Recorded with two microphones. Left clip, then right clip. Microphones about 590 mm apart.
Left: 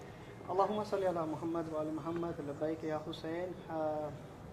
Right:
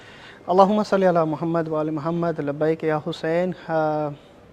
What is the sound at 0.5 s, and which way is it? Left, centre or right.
A man's voice, right.